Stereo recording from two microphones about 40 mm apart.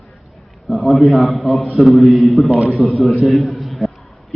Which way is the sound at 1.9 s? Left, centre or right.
Right.